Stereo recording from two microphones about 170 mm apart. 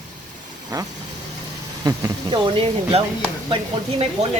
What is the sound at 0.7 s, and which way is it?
Speech, 20° right (ahead or behind).